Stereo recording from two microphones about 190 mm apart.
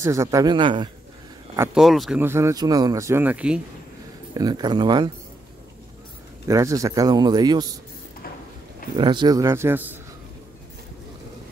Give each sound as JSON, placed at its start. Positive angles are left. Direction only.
{"t": 0.0, "sound": "a man's voice", "side_deg": -15}
{"t": 1.6, "sound": "speech", "side_deg": -5}
{"t": 2.1, "sound": "speech", "side_deg": -15}
{"t": 4.3, "sound": "a man's voice", "side_deg": -20}
{"t": 6.4, "sound": "a man's voice", "side_deg": -15}
{"t": 8.9, "sound": "speech", "side_deg": -25}